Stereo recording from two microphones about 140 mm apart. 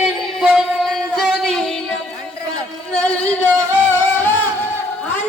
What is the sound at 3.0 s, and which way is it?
Music, 10° left (ahead or behind).